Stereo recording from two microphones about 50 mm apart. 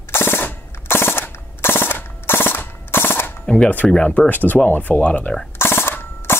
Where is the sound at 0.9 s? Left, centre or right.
Left.